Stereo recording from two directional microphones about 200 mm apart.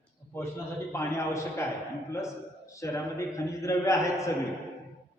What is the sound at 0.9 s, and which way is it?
Speech, 15° left (ahead or behind).